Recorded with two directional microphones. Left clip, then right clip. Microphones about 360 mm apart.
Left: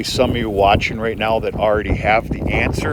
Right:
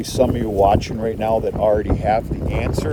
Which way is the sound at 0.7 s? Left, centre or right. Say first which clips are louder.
Left 3 dB; centre.